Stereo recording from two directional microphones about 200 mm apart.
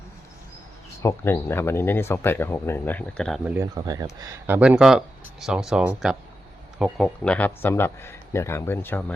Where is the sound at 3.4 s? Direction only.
15° right (ahead or behind).